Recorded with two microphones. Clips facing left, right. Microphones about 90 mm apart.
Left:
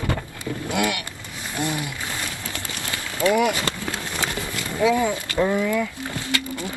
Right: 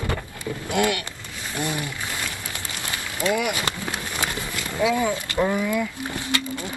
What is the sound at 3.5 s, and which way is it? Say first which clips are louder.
Run: left 1 dB; 20° right (ahead or behind).